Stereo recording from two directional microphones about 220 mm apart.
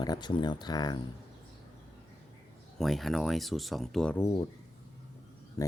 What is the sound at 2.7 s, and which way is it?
Speech, centre (ahead or behind).